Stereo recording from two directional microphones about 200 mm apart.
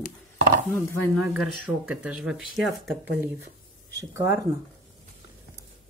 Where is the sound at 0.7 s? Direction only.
10° left (ahead or behind).